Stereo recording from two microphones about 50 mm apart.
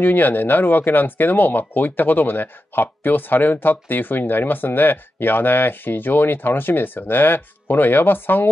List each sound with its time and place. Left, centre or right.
0.0 s speech: left